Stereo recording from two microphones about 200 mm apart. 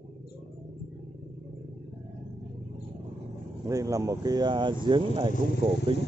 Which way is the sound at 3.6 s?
15° right (ahead or behind).